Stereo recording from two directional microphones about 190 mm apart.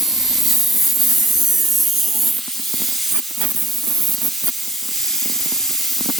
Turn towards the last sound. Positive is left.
turn(degrees=0)  # may be behind; listen again after turning